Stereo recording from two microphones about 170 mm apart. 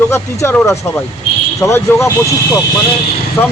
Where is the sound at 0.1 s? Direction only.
15° left (ahead or behind).